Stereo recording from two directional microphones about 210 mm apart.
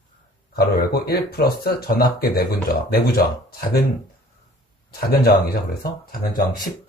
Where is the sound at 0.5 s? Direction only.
50° left (ahead or behind).